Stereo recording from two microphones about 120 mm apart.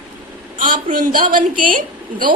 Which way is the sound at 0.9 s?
90° right.